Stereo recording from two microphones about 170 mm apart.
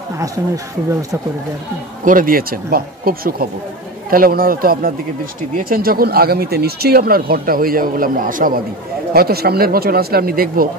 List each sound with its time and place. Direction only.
2.0 s speech: 55° right (ahead or behind)
9.1 s speech: 65° right (ahead or behind)